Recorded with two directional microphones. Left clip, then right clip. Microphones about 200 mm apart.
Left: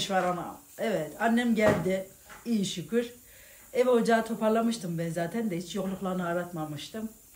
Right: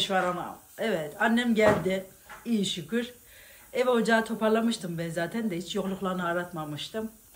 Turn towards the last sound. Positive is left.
turn(degrees=0)  # may be behind; listen again after turning